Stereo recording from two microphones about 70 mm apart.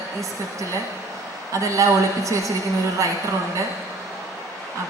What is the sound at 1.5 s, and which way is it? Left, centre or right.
Speech, right.